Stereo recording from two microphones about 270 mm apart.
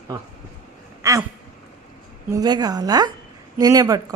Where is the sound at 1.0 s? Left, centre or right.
Centre.